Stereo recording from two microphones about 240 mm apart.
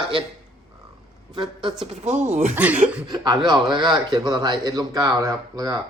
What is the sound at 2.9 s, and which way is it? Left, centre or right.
Speech, centre.